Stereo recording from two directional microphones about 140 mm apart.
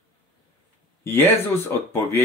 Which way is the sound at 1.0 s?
15° left (ahead or behind).